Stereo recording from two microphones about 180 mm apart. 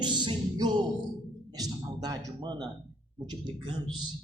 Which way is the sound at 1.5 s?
20° right (ahead or behind).